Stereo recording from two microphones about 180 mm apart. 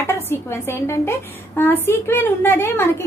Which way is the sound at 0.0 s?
15° left (ahead or behind).